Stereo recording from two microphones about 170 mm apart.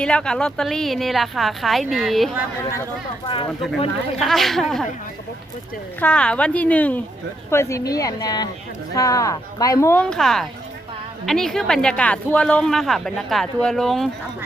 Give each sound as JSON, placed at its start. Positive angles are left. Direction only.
{"t": 0.0, "sound": "speech", "side_deg": 5}
{"t": 3.2, "sound": "speech", "side_deg": 30}
{"t": 4.2, "sound": "speech", "side_deg": 0}
{"t": 6.0, "sound": "speech", "side_deg": 5}
{"t": 10.1, "sound": "speech", "side_deg": 0}